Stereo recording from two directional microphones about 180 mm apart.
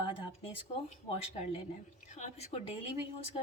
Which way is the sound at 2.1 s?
40° left (ahead or behind).